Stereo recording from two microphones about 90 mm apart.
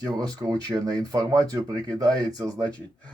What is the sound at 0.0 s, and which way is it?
Speech, 45° right (ahead or behind).